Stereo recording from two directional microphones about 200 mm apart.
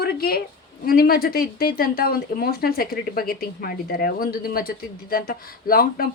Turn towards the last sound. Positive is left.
turn(degrees=45)  # may be behind; listen again after turning